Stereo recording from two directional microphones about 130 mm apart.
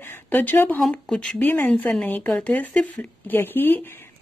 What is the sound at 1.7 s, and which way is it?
A woman's voice, 5° left (ahead or behind).